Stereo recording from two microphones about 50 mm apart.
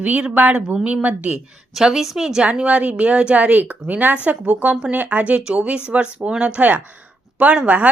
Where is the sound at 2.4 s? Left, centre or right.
Right.